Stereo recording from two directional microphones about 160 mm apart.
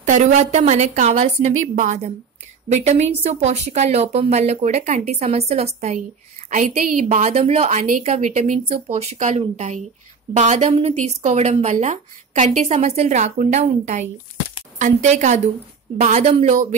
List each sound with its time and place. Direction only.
0.0 s a woman's voice: 50° right (ahead or behind)